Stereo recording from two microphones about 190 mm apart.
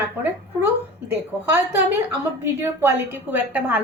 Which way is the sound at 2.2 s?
10° right (ahead or behind).